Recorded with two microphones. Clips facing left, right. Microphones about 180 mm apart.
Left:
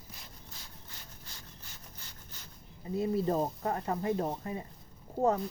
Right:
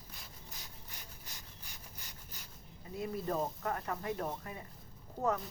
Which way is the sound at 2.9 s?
25° left (ahead or behind).